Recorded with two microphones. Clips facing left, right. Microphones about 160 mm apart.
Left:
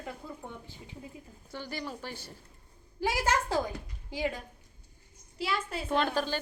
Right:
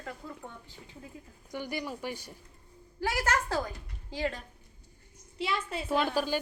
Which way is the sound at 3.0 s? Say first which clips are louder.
Left 1 dB; 10° left (ahead or behind).